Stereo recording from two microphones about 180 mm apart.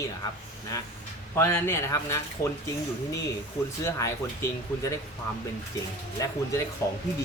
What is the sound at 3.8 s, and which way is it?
Speech, 15° left (ahead or behind).